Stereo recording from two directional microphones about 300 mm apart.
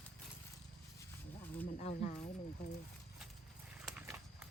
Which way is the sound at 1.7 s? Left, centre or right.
Left.